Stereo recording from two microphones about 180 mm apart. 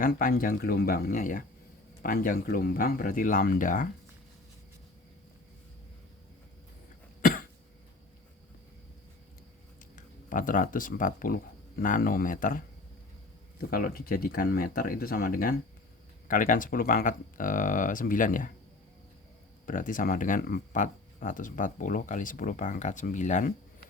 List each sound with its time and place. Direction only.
0.0 s speech: 50° left (ahead or behind)
7.2 s cough: 50° left (ahead or behind)
9.9 s speech: 45° left (ahead or behind)
19.6 s speech: 45° left (ahead or behind)